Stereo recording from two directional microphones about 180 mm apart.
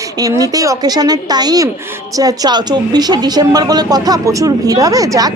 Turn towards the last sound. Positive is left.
turn(degrees=-20)  # may be behind; listen again after turning